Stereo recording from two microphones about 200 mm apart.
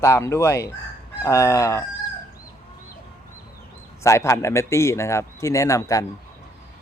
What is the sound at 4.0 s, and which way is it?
A man's voice, 15° left (ahead or behind).